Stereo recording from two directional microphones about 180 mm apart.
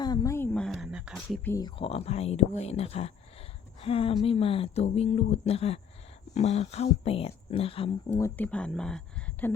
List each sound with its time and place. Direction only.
0.0 s a sound: 20° left (ahead or behind); by 1.4 s centre (ahead or behind)
1.5 s speech: 20° left (ahead or behind)
8.1 s speech: 10° left (ahead or behind)